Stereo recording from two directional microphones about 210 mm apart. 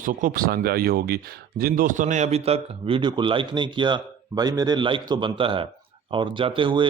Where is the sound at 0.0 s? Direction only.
40° right (ahead or behind).